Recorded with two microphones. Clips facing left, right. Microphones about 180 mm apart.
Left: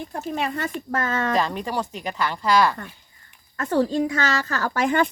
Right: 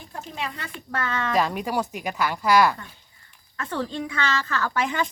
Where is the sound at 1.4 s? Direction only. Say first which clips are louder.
Right 1 dB; 10° right (ahead or behind).